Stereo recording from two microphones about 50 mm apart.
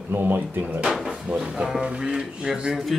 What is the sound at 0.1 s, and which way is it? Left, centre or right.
Speech, right.